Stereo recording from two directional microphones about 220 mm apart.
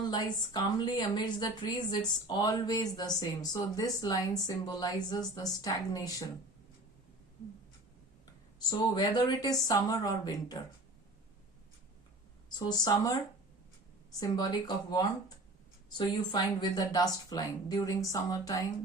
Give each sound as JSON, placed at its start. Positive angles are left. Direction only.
{"t": 0.0, "sound": "a woman's voice", "side_deg": 20}
{"t": 8.5, "sound": "speech", "side_deg": 20}
{"t": 12.5, "sound": "speech", "side_deg": 20}
{"t": 14.2, "sound": "speech", "side_deg": 15}
{"t": 16.0, "sound": "speech", "side_deg": 20}